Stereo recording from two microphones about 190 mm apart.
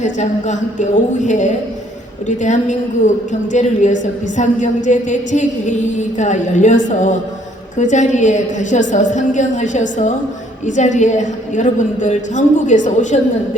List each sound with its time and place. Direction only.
0.0 s a woman's voice: 40° left (ahead or behind)